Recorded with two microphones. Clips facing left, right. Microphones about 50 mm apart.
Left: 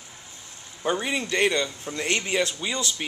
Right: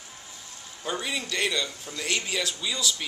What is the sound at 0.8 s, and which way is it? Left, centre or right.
A man's voice, left.